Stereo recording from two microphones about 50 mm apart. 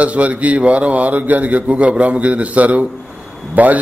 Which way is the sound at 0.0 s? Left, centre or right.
Right.